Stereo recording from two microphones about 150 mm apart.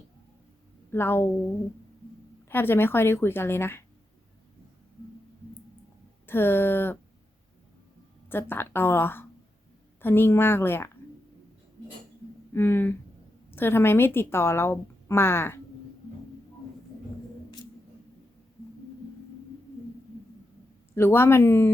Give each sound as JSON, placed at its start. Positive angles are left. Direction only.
{"t": 0.9, "sound": "speech", "side_deg": 15}
{"t": 2.5, "sound": "a woman's voice", "side_deg": 15}
{"t": 6.2, "sound": "a woman's voice", "side_deg": 15}
{"t": 8.3, "sound": "a woman's voice", "side_deg": 15}
{"t": 12.5, "sound": "a woman's voice", "side_deg": 15}
{"t": 20.9, "sound": "a woman's voice", "side_deg": 15}